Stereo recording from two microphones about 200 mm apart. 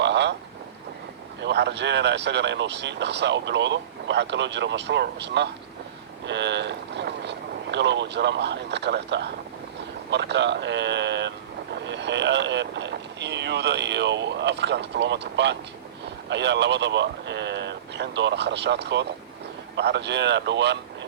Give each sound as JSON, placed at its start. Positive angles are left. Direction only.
{"t": 0.0, "sound": "boat", "side_deg": -60}
{"t": 1.4, "sound": "speech", "side_deg": -60}